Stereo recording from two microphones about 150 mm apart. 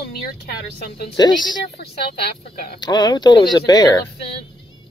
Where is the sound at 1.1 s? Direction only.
25° left (ahead or behind).